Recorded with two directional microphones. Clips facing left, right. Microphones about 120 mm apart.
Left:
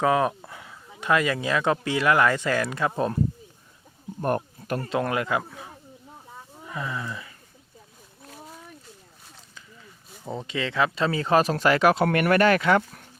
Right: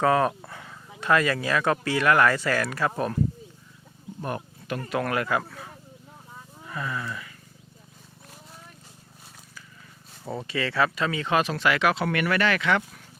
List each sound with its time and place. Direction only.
0.0 s speech: 10° left (ahead or behind)
4.2 s a sound: 45° left (ahead or behind)
4.8 s speech: 25° left (ahead or behind)
10.2 s speech: 20° left (ahead or behind)
10.9 s speech: 30° left (ahead or behind)